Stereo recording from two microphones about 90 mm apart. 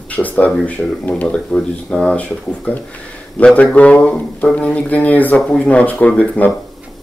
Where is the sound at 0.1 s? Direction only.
15° left (ahead or behind).